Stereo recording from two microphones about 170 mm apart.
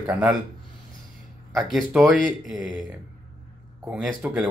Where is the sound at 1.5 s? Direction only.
Centre (ahead or behind).